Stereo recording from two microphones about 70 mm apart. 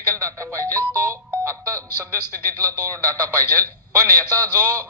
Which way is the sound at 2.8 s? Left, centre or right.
Left.